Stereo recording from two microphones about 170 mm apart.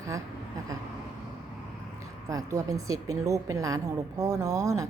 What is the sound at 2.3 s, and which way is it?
A woman's voice, 20° right (ahead or behind).